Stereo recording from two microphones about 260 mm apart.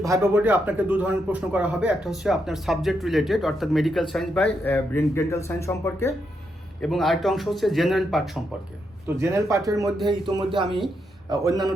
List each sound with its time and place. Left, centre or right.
0.0 s a man's voice: centre
9.0 s speech: centre